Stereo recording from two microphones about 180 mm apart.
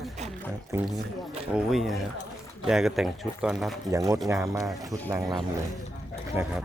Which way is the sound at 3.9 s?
20° right (ahead or behind).